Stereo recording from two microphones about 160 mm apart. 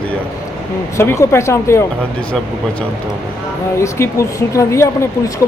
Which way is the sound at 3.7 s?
20° left (ahead or behind).